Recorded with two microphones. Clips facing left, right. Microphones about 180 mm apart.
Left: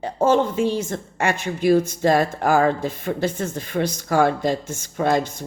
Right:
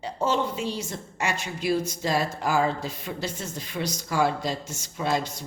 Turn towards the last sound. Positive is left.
turn(degrees=50)  # may be behind; listen again after turning